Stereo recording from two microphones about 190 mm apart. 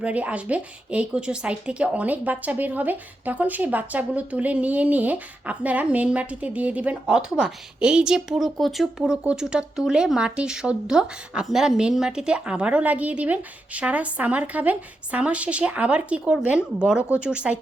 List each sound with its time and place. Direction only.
0.0 s speech: 5° right (ahead or behind)